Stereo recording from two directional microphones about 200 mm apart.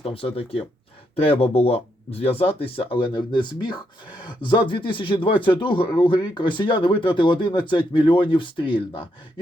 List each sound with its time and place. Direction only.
0.0 s speech: 30° left (ahead or behind)